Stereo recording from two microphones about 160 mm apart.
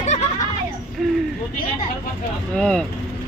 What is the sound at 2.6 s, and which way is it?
Speech, 5° left (ahead or behind).